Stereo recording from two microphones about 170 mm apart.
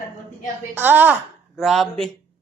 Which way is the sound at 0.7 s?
10° right (ahead or behind).